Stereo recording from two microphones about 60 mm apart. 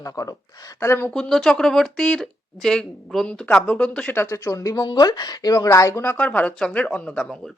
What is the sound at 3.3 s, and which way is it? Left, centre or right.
Speech, left.